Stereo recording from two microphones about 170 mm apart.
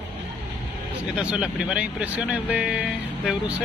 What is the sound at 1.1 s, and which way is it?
Speech, 5° right (ahead or behind).